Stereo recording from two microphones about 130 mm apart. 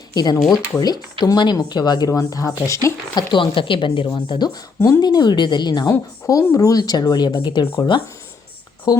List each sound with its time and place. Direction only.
0.1 s speech: 30° left (ahead or behind)
3.3 s speech: 40° left (ahead or behind)